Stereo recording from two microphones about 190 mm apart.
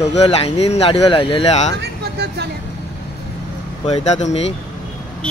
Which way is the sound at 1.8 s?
60° right (ahead or behind).